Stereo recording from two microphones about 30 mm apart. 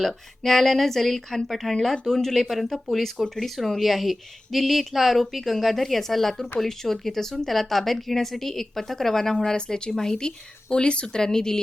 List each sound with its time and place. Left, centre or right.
0.0 s speech: centre
10.7 s speech: left; by 11.6 s centre